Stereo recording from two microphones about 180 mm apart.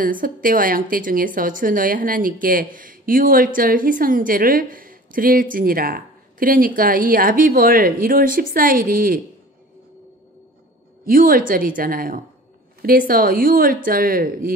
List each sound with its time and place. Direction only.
0.0 s a woman's voice: 50° right (ahead or behind)
11.1 s a woman's voice: 50° right (ahead or behind)